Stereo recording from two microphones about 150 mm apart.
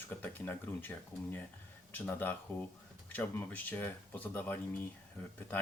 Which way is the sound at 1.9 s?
15° left (ahead or behind).